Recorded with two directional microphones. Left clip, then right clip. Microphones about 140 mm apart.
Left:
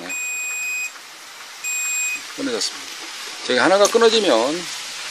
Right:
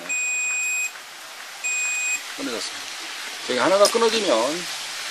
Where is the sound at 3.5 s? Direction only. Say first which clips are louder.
Left 3 dB; 50° left (ahead or behind).